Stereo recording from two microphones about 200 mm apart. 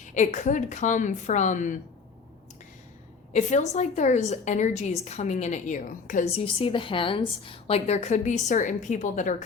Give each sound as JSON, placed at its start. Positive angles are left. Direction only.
{"t": 0.1, "sound": "a woman's voice", "side_deg": 40}
{"t": 3.3, "sound": "a woman's voice", "side_deg": 35}
{"t": 6.4, "sound": "a woman's voice", "side_deg": 25}